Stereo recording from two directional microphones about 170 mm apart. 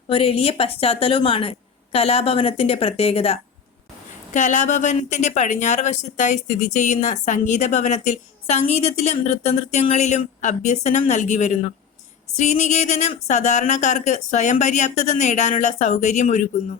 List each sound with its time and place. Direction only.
0.1 s a woman's voice: 35° left (ahead or behind)